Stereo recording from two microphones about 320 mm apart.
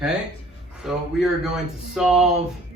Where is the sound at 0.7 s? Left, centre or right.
Centre.